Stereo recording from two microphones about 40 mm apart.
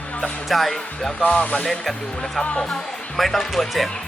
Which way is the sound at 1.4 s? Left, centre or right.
Left.